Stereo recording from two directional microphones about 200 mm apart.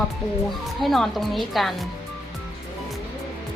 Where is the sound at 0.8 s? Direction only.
Centre (ahead or behind).